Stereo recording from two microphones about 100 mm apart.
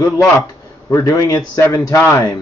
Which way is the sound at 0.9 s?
35° left (ahead or behind).